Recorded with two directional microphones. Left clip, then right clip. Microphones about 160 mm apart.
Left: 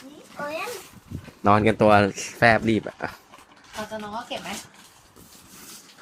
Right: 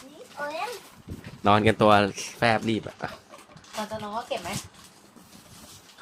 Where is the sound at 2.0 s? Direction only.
10° left (ahead or behind).